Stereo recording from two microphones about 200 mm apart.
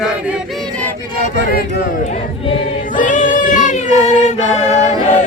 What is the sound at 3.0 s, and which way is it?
Singing, 40° left (ahead or behind).